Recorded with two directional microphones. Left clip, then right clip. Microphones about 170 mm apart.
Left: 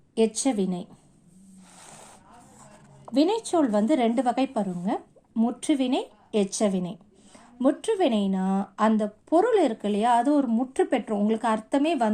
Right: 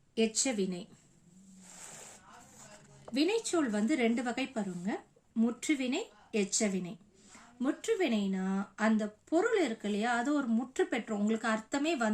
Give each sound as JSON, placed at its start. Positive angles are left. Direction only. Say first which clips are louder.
{"t": 0.2, "sound": "speech", "louder": "left 7 dB", "side_deg": 25}
{"t": 3.3, "sound": "a woman's voice", "louder": "left 8 dB", "side_deg": 20}